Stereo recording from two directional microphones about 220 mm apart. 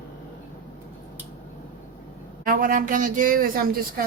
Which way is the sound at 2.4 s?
40° right (ahead or behind).